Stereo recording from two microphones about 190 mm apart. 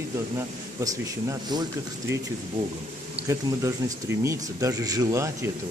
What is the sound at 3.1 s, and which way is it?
Speech, 15° right (ahead or behind).